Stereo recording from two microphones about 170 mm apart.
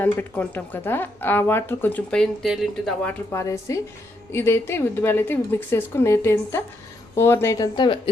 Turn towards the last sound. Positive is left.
turn(degrees=25)  # may be behind; listen again after turning